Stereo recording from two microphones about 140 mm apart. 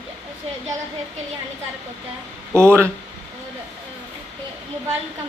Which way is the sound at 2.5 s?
20° right (ahead or behind).